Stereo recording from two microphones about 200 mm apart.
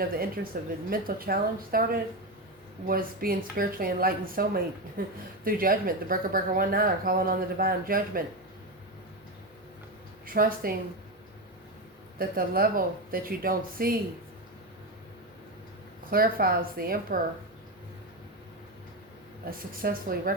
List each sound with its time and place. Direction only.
0.5 s speech: 45° right (ahead or behind)
10.2 s speech: 45° right (ahead or behind)
12.2 s speech: 45° right (ahead or behind)
16.0 s speech: 45° right (ahead or behind)
19.5 s speech: 45° right (ahead or behind)